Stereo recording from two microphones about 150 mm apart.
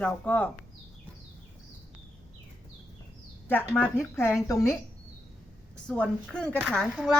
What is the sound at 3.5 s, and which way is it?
A woman's voice, 10° left (ahead or behind).